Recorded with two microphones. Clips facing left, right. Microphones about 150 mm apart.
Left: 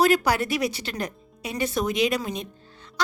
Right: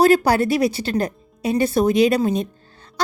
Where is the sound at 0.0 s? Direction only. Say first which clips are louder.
Right 6 dB; 30° right (ahead or behind).